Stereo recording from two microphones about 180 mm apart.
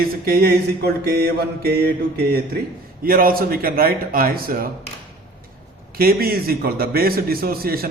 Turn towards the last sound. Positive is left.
turn(degrees=-55)  # may be behind; listen again after turning